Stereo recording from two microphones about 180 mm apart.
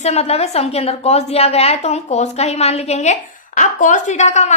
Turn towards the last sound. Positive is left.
turn(degrees=40)  # may be behind; listen again after turning